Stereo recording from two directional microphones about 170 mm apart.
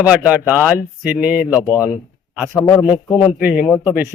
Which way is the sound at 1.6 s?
20° left (ahead or behind).